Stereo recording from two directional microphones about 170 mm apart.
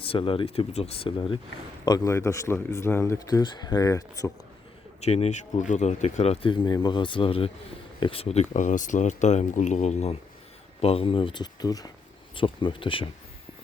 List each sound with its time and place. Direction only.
0.0 s speech: 30° left (ahead or behind)
1.8 s speech: 20° left (ahead or behind)
4.9 s speech: 40° left (ahead or behind)